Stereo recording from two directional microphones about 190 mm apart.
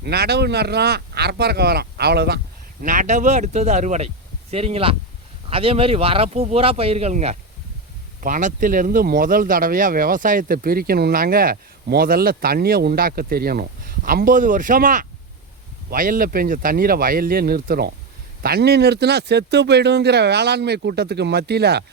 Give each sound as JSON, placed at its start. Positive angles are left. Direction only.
{"t": 0.0, "sound": "speech", "side_deg": -60}
{"t": 2.8, "sound": "speech", "side_deg": -40}